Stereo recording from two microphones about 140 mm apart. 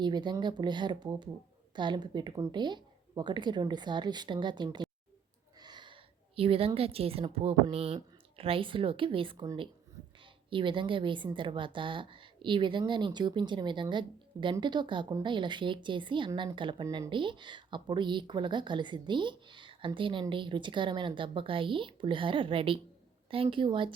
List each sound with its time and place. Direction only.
0.0 s a woman's voice: 30° right (ahead or behind)
10.5 s speech: 35° right (ahead or behind)
16.8 s speech: 20° right (ahead or behind)
17.1 s speech: 35° right (ahead or behind)